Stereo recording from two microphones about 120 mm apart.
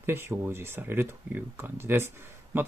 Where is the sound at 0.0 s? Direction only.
20° right (ahead or behind).